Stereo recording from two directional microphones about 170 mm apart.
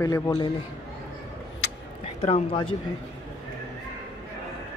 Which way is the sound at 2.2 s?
35° left (ahead or behind).